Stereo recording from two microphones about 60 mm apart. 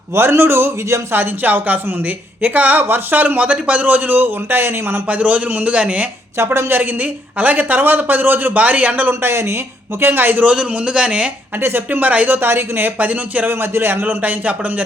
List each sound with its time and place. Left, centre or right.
0.1 s a man's voice: right
1.1 s speech: right
5.0 s speech: right
6.3 s a man's voice: right
7.0 s speech: right
9.2 s a man's voice: right
10.4 s speech: right
11.9 s speech: right
13.5 s speech: right
14.0 s speech: right